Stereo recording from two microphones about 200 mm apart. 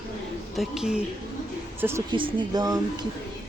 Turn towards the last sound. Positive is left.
turn(degrees=-20)  # may be behind; listen again after turning